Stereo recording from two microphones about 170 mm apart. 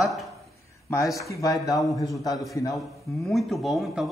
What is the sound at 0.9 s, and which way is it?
A man's voice, 20° left (ahead or behind).